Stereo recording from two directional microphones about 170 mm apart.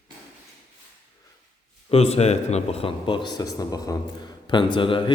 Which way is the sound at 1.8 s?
35° left (ahead or behind).